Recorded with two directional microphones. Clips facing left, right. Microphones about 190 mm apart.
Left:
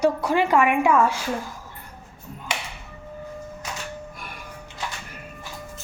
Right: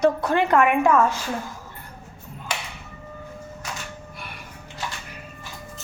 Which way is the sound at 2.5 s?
20° left (ahead or behind).